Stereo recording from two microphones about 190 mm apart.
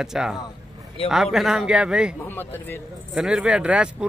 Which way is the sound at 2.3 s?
10° left (ahead or behind).